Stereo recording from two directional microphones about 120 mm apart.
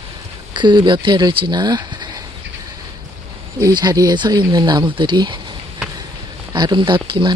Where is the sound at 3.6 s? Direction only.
30° right (ahead or behind).